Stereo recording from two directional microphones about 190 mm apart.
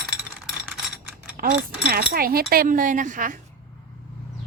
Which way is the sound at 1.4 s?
50° right (ahead or behind).